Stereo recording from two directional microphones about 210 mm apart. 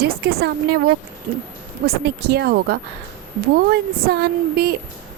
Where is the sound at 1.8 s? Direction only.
50° right (ahead or behind).